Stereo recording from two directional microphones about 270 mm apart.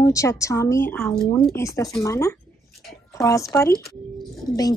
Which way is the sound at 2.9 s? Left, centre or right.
Centre.